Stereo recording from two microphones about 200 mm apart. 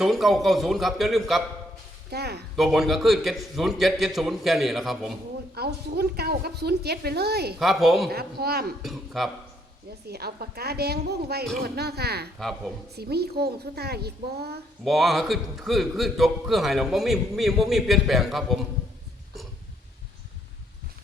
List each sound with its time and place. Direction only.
0.0 s a man's voice: centre (ahead or behind)
2.0 s a woman's voice: 55° right (ahead or behind)
2.6 s a man's voice: centre (ahead or behind)
5.5 s a woman's voice: 50° right (ahead or behind)
7.6 s a man's voice: centre (ahead or behind)
8.1 s a woman's voice: 50° right (ahead or behind)
8.8 s a man's voice: centre (ahead or behind)
10.1 s a woman's voice: 50° right (ahead or behind)
12.4 s a man's voice: centre (ahead or behind)
13.0 s a woman's voice: 55° right (ahead or behind)
14.8 s a man's voice: centre (ahead or behind)